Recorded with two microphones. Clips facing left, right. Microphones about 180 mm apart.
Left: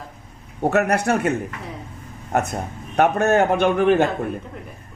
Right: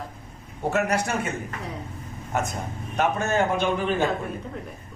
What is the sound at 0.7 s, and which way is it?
Speech, 60° left (ahead or behind).